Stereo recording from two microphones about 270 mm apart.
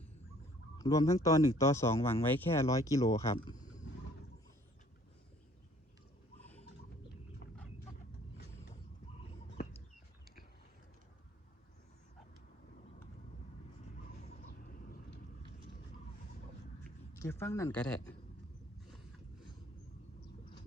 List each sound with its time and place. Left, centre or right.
0.8 s speech: centre
13.9 s vehicle: left
17.2 s speech: centre